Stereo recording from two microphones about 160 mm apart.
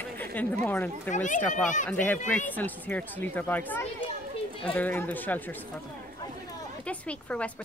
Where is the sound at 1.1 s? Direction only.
50° left (ahead or behind).